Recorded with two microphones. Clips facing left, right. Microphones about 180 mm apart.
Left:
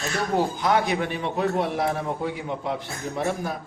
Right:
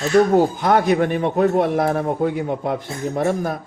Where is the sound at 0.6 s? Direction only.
50° right (ahead or behind).